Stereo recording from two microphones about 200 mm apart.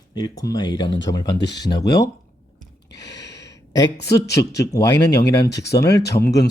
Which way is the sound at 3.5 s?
20° left (ahead or behind).